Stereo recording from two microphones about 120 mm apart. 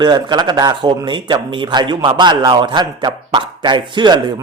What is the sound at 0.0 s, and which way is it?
Speech, 40° right (ahead or behind).